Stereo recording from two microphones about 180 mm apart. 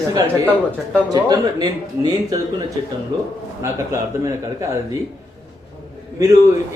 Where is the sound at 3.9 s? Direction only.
15° right (ahead or behind).